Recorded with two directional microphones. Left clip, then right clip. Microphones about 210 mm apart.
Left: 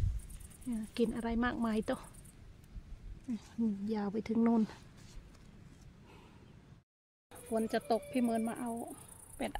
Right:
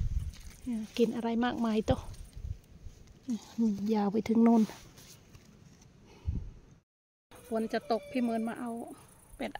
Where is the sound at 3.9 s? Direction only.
20° right (ahead or behind).